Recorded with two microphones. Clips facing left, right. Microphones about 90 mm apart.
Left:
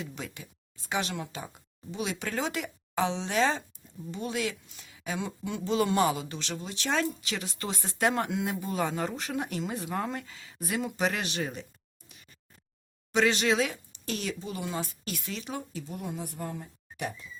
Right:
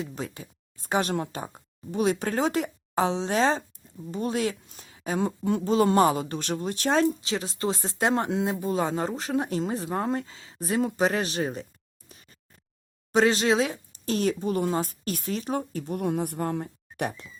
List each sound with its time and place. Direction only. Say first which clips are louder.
0.0 s speech: right 5 dB; 35° right (ahead or behind)
13.1 s speech: right 4 dB; 35° right (ahead or behind); by 17.3 s 55° right (ahead or behind)